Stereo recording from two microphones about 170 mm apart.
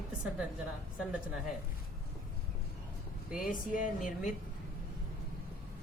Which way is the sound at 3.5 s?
55° left (ahead or behind).